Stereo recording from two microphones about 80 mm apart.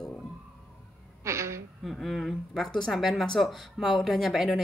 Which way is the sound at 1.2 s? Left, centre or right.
Right.